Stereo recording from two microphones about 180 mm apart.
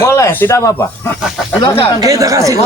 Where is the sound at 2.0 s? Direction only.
20° right (ahead or behind).